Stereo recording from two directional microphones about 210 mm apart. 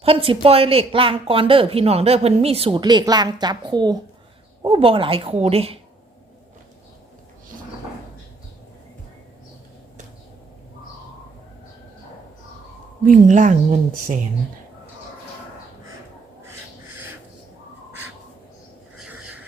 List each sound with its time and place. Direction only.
0.0 s speech: 25° right (ahead or behind)
13.0 s a woman's voice: 35° right (ahead or behind)